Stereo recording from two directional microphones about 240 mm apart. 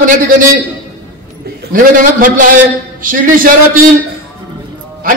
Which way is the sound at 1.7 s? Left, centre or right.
Right.